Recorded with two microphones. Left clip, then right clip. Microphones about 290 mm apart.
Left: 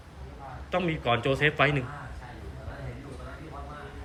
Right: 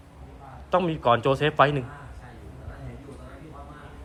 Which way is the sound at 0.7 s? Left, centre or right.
Centre.